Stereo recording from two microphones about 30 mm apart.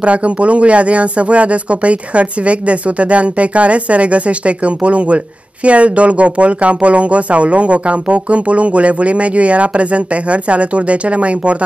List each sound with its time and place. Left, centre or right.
0.0 s speech: right